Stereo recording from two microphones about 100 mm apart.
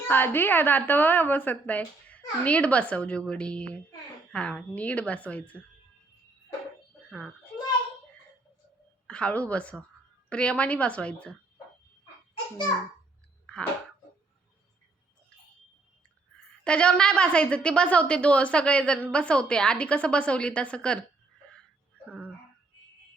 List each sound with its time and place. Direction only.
0.1 s a woman's voice: 20° left (ahead or behind)
7.1 s a child's voice: centre (ahead or behind)
9.0 s a woman's voice: 10° left (ahead or behind)
16.6 s a woman's voice: 10° left (ahead or behind)